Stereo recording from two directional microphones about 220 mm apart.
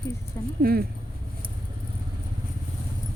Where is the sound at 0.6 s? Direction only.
45° right (ahead or behind).